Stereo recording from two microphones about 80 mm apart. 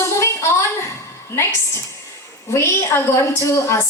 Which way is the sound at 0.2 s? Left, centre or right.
Left.